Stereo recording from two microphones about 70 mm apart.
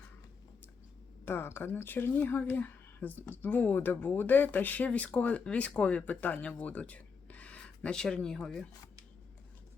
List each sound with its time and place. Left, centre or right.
1.2 s speech: left; by 8.6 s centre